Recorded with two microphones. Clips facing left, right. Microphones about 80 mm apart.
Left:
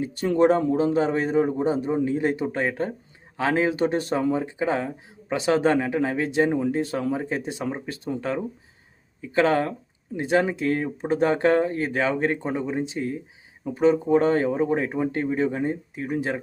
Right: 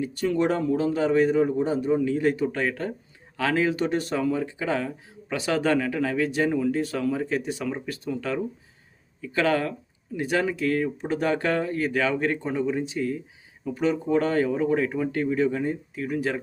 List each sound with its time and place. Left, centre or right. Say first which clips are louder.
0.0 s speech: left 4 dB; left
0.6 s speech: left 2 dB; left
9.2 s speech: left 3 dB; left